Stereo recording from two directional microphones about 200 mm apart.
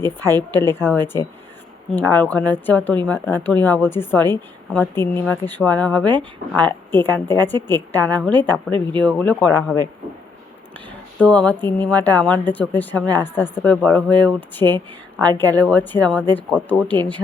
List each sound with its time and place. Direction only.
0.0 s speech: 10° left (ahead or behind)
8.7 s speech: 25° right (ahead or behind)
9.0 s speech: 5° left (ahead or behind)
10.8 s speech: 5° left (ahead or behind)